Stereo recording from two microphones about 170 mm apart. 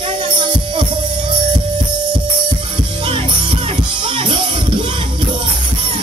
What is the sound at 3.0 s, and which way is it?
Music, 30° right (ahead or behind).